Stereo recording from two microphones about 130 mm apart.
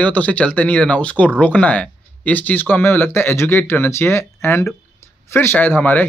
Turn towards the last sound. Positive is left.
turn(degrees=15)  # may be behind; listen again after turning